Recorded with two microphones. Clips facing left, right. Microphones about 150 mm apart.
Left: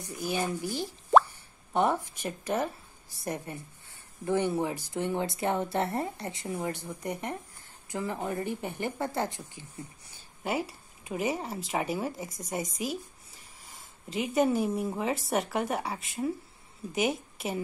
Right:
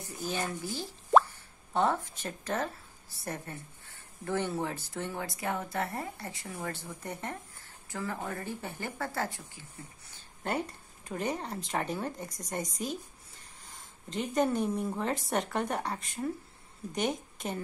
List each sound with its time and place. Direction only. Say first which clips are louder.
0.2 s speech: left 4 dB; 10° left (ahead or behind)
10.4 s a woman's voice: left 2 dB; 5° left (ahead or behind)